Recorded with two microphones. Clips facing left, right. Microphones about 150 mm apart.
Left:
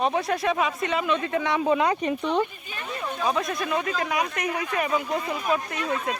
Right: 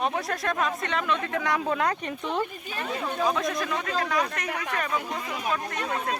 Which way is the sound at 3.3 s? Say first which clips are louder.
Left 4 dB; 5° left (ahead or behind).